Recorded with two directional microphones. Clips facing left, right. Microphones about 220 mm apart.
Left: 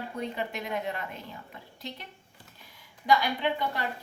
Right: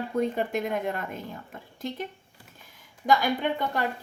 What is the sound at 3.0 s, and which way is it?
Speech, 45° right (ahead or behind).